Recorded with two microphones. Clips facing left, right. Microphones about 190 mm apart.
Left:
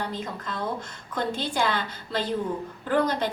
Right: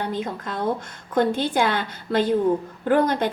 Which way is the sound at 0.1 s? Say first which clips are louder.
Right 5 dB; 50° right (ahead or behind).